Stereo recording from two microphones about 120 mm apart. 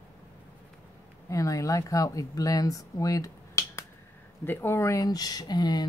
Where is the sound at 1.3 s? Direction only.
30° left (ahead or behind).